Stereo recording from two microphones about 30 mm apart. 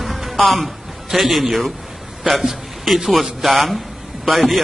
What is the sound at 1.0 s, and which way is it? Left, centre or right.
A man's voice, centre.